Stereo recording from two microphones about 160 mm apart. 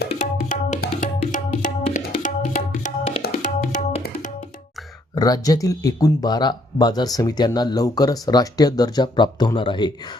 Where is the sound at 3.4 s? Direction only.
50° left (ahead or behind).